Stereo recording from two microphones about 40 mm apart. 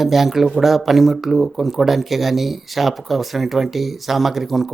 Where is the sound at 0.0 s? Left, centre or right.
Centre.